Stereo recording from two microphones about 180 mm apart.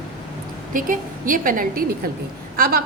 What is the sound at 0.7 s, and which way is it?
A woman's voice, 50° right (ahead or behind).